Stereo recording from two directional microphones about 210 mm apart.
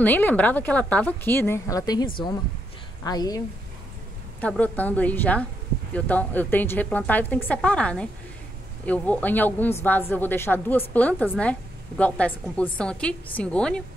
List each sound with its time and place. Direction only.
0.0 s a woman's voice: 10° left (ahead or behind)
4.4 s a woman's voice: 5° left (ahead or behind)